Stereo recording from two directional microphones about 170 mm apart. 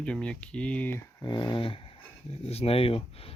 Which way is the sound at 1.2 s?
25° left (ahead or behind).